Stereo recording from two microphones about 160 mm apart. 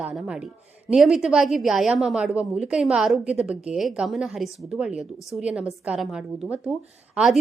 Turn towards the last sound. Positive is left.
turn(degrees=0)  # may be behind; listen again after turning